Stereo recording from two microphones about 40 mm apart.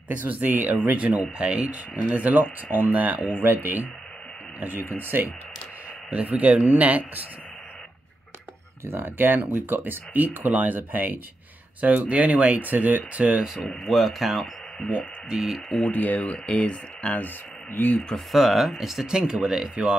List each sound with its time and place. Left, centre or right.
0.2 s speech: right
3.4 s speech: right
6.2 s speech: right
8.8 s speech: right
9.5 s speech: right
11.8 s speech: right
13.8 s speech: centre
15.8 s speech: left
16.3 s speech: left
17.2 s speech: left
18.1 s speech: centre
19.0 s speech: right